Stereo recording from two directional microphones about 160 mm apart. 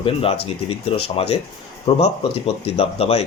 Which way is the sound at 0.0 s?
35° left (ahead or behind).